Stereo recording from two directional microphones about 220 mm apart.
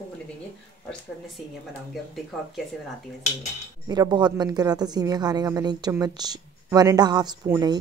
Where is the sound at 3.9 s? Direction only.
20° right (ahead or behind).